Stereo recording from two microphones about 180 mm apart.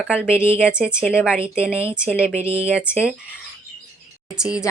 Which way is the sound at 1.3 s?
15° left (ahead or behind).